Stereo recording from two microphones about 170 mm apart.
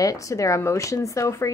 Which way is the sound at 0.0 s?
20° left (ahead or behind).